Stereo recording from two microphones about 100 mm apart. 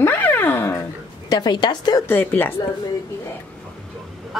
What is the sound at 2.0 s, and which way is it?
Speech, 20° left (ahead or behind).